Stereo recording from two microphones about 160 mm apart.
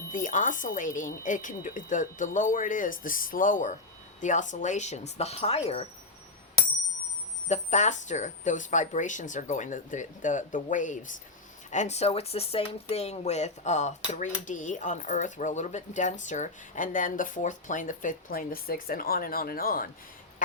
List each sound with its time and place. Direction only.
0.1 s a woman's voice: 55° left (ahead or behind)
7.4 s speech: 45° left (ahead or behind); by 19.9 s 65° left (ahead or behind)